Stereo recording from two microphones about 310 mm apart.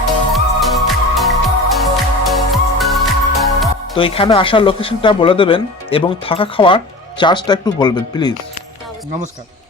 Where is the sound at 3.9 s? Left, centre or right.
Centre.